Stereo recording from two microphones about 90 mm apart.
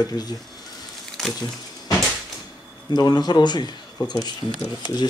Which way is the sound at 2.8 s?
50° left (ahead or behind).